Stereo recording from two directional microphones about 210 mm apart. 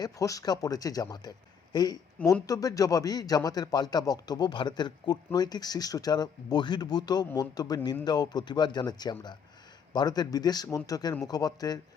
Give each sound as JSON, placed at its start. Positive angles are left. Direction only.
{"t": 0.0, "sound": "a man's voice", "side_deg": 15}